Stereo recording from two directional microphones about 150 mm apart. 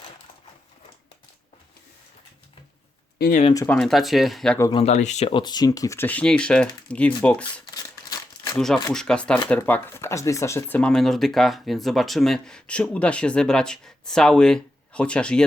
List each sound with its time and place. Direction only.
3.7 s speech: 5° left (ahead or behind)
4.7 s speech: 45° left (ahead or behind)
5.3 s speech: 30° left (ahead or behind); by 7.4 s 10° left (ahead or behind)
7.7 s crumpling: 25° left (ahead or behind)
8.5 s speech: 5° left (ahead or behind)